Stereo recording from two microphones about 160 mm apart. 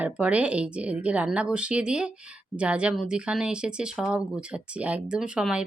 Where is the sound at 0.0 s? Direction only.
10° right (ahead or behind).